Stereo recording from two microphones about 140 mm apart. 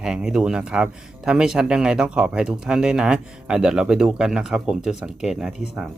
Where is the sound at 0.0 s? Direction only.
5° right (ahead or behind).